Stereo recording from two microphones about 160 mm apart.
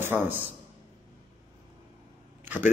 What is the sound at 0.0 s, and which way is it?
Speech, 15° right (ahead or behind).